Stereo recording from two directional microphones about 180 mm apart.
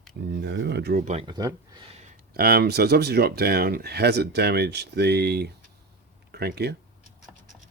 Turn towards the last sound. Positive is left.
turn(degrees=-65)  # may be behind; listen again after turning